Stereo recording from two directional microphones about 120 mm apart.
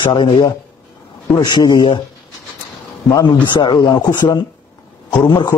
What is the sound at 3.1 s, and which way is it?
Speech, 40° left (ahead or behind).